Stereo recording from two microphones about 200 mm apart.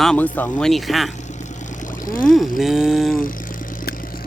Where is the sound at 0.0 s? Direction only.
5° left (ahead or behind).